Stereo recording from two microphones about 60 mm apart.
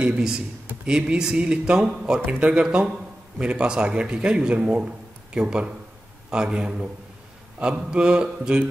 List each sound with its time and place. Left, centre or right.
0.0 s speech: centre
2.2 s speech: right